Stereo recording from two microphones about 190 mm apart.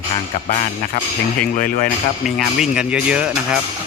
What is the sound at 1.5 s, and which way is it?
Speech, 45° left (ahead or behind).